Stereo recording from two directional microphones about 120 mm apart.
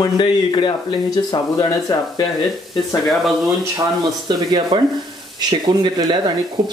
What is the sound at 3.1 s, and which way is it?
Speech, centre (ahead or behind).